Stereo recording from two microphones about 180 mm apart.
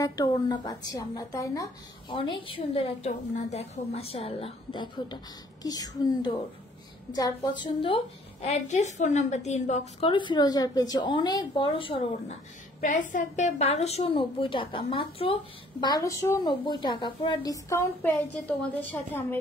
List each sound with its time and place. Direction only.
0.0 s a woman's voice: 20° left (ahead or behind)
12.8 s a woman's voice: 45° left (ahead or behind)
15.8 s a woman's voice: 20° left (ahead or behind)